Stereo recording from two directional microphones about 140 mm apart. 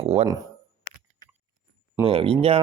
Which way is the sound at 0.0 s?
45° right (ahead or behind).